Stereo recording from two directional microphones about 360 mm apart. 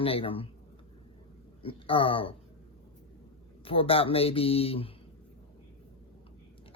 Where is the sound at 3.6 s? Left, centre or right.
Centre.